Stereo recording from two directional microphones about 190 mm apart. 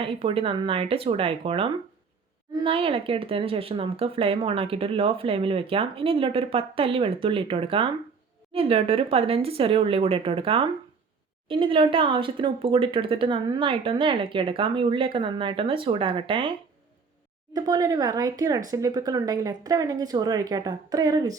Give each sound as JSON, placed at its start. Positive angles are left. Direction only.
{"t": 0.0, "sound": "speech", "side_deg": -30}